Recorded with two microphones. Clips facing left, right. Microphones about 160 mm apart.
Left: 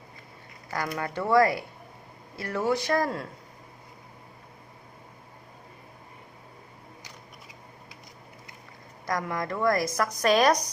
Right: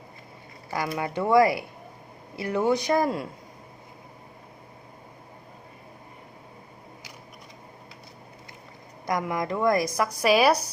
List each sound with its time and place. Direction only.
0.9 s a woman's voice: 15° right (ahead or behind)
9.0 s a woman's voice: 15° right (ahead or behind)